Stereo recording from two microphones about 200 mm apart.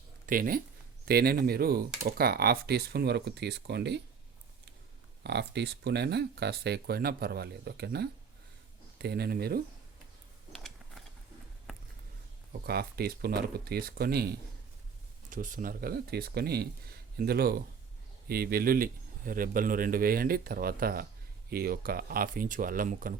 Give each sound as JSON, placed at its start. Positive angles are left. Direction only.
{"t": 0.3, "sound": "speech", "side_deg": -45}
{"t": 5.2, "sound": "speech", "side_deg": -55}
{"t": 10.5, "sound": "a sound", "side_deg": 0}
{"t": 12.6, "sound": "speech", "side_deg": -50}